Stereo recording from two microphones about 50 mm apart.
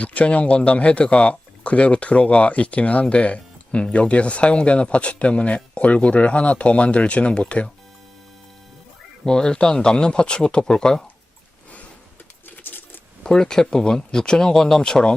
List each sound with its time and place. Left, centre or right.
0.0 s speech: left
9.2 s speech: centre
12.5 s keys jangling: left
13.2 s speech: centre